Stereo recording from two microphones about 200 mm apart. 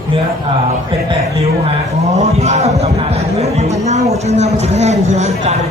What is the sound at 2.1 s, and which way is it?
A man's voice, 30° right (ahead or behind).